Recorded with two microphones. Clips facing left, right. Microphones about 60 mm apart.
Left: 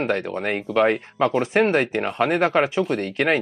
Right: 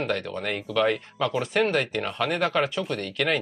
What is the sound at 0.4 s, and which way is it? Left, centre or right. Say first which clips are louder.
Speech: left 5 dB; left.